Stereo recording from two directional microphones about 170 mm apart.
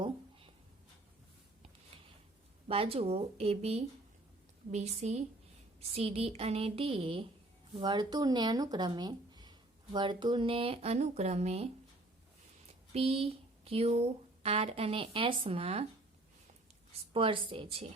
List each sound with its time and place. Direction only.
2.6 s speech: 35° right (ahead or behind)
12.9 s speech: 35° right (ahead or behind)
17.1 s speech: 30° right (ahead or behind)